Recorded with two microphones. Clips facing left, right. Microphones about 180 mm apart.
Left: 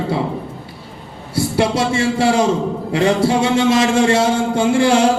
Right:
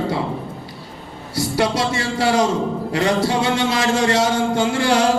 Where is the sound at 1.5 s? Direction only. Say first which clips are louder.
Left 3 dB; 25° left (ahead or behind).